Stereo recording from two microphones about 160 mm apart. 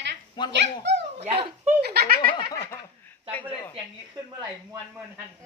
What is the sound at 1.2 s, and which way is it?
Speech, 35° right (ahead or behind).